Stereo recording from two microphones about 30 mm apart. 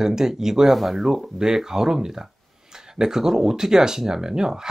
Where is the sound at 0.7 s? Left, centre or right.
Centre; by 4.6 s right.